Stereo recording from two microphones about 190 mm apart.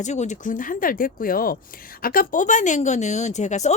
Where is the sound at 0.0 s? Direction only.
40° left (ahead or behind).